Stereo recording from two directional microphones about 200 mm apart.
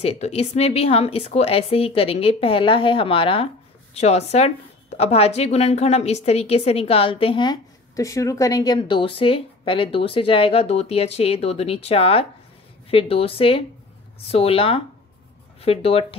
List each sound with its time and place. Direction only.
0.0 s a woman's voice: 30° left (ahead or behind)